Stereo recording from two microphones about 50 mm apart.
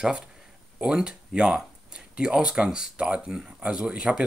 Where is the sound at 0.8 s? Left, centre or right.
Centre.